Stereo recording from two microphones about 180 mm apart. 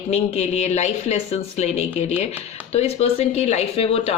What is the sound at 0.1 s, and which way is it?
Speech, 35° left (ahead or behind).